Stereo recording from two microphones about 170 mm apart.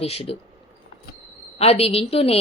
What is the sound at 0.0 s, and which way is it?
Speech, 35° left (ahead or behind).